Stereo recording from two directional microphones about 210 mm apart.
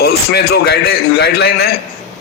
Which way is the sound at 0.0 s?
50° left (ahead or behind).